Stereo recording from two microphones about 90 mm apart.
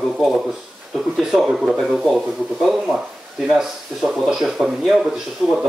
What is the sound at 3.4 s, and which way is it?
Speech, 5° right (ahead or behind).